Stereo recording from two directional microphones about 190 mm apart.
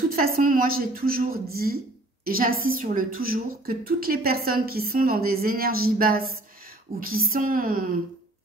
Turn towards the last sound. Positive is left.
turn(degrees=-50)  # may be behind; listen again after turning